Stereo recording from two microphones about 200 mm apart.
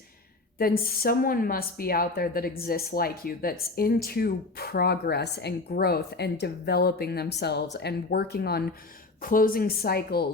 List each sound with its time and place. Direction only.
0.6 s a woman's voice: 45° left (ahead or behind)